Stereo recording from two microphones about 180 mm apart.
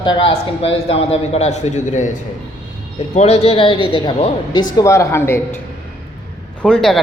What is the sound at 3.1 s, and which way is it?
A man's voice, 35° left (ahead or behind).